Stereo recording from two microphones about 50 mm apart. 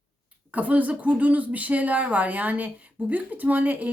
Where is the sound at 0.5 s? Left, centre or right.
Right.